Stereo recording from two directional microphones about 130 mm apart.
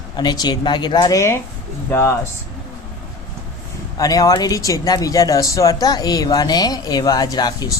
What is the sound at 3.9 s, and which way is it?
Speech, 30° left (ahead or behind).